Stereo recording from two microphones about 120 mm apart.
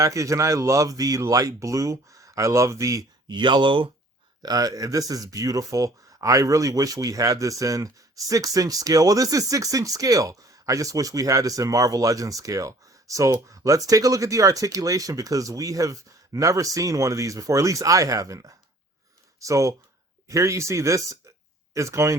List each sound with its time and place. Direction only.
0.0 s speech: 25° right (ahead or behind); by 3.8 s 45° right (ahead or behind)
4.4 s speech: 30° right (ahead or behind)